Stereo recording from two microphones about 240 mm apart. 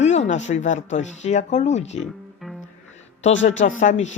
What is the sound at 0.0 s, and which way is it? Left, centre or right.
Speech, left.